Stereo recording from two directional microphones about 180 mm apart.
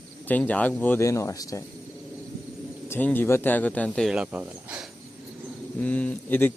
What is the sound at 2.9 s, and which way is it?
A man's voice, 10° left (ahead or behind).